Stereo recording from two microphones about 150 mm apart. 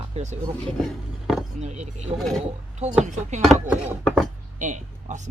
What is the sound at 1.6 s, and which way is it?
Speech, 50° right (ahead or behind).